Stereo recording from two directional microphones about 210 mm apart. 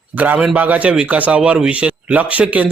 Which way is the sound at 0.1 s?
5° right (ahead or behind).